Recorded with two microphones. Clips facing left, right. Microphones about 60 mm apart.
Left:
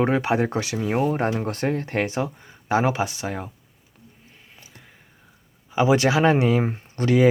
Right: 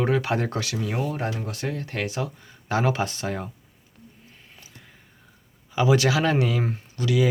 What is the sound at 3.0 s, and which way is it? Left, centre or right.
Speech, centre.